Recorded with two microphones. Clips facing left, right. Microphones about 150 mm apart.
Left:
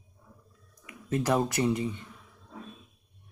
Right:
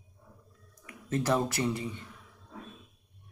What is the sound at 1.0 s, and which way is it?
Speech, 15° left (ahead or behind).